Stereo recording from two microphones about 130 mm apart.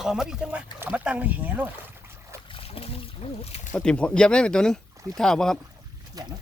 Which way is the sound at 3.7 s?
10° left (ahead or behind).